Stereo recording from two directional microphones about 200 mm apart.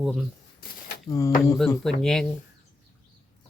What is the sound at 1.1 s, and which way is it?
Speech, 15° left (ahead or behind).